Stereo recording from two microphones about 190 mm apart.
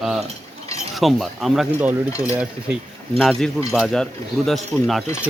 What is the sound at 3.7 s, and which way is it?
Speech, centre (ahead or behind).